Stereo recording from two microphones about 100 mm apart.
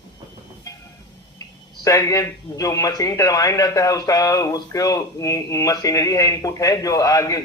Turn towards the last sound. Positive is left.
turn(degrees=35)  # may be behind; listen again after turning